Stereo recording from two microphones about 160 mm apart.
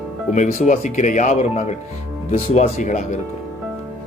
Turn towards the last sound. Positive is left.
turn(degrees=50)  # may be behind; listen again after turning